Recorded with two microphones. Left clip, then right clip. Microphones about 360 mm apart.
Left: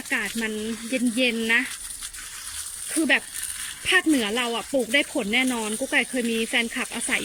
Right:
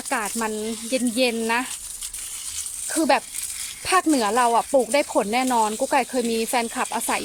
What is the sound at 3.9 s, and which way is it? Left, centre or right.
Speech, right.